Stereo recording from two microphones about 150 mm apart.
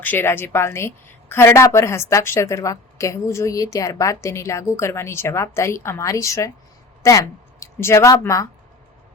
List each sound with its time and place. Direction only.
0.0 s a woman's voice: 15° left (ahead or behind)